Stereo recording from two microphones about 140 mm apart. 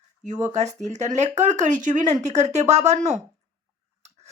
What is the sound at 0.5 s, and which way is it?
A woman's voice, 55° right (ahead or behind).